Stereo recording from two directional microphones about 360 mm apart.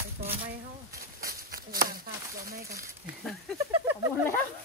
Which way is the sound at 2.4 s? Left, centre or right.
Right.